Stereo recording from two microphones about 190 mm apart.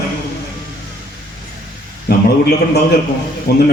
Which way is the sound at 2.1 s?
60° left (ahead or behind).